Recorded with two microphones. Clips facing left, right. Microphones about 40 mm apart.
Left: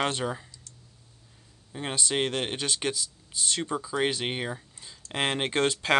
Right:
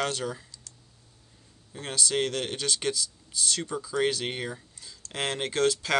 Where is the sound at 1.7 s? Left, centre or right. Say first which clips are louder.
Even; centre.